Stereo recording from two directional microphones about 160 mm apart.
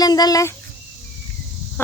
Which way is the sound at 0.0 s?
25° left (ahead or behind).